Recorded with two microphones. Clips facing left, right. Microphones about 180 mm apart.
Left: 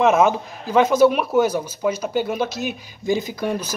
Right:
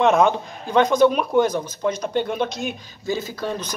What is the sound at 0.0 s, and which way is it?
Speech, 5° left (ahead or behind).